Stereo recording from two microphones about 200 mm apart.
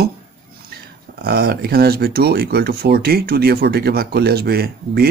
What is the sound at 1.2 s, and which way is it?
Speech, 50° right (ahead or behind).